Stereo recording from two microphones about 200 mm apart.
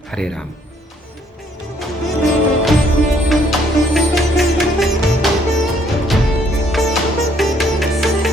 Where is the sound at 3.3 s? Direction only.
Centre (ahead or behind).